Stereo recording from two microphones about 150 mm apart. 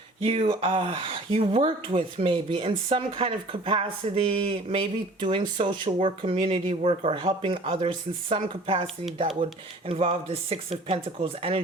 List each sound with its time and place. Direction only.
0.3 s speech: 40° right (ahead or behind)